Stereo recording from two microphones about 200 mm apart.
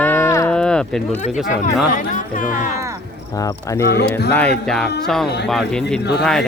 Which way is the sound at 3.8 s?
55° left (ahead or behind).